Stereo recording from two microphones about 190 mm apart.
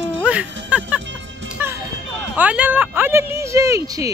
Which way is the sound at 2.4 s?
5° right (ahead or behind).